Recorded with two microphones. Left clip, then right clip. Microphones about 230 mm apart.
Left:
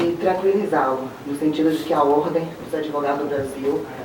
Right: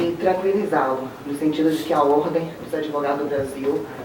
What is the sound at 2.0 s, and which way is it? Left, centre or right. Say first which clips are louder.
Speech: even; right.